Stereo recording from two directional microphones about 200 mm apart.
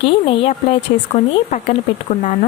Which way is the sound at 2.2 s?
35° left (ahead or behind).